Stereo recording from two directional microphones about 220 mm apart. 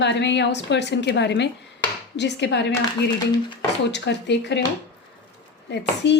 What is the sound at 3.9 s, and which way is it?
Speech, 50° left (ahead or behind).